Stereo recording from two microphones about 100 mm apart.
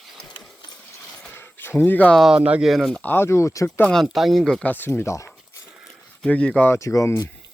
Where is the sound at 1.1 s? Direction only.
15° left (ahead or behind).